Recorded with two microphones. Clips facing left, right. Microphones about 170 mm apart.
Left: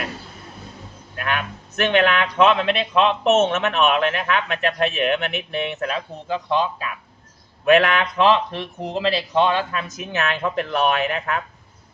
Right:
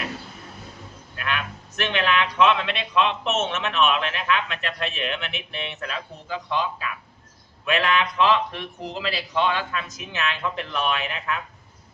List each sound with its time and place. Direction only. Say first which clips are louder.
1.1 s a man's voice: left 4 dB; 50° left (ahead or behind)
7.6 s a man's voice: left 7 dB; 50° left (ahead or behind)